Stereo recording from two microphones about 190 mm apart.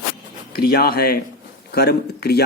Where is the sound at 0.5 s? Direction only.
55° left (ahead or behind).